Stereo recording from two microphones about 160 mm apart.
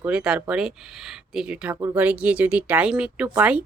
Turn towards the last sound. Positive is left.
turn(degrees=-10)  # may be behind; listen again after turning